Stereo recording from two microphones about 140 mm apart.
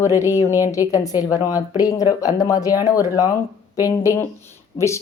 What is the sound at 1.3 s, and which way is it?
A woman's voice, 25° left (ahead or behind).